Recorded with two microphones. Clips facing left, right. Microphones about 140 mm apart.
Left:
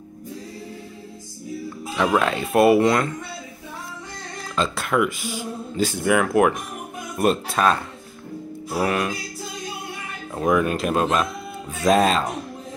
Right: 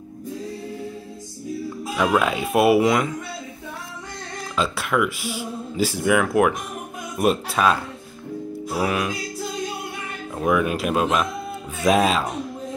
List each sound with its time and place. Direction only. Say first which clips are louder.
2.0 s speech: even; 5° right (ahead or behind)
4.6 s speech: left 1 dB; 5° right (ahead or behind)
10.3 s speech: left 1 dB; 5° right (ahead or behind)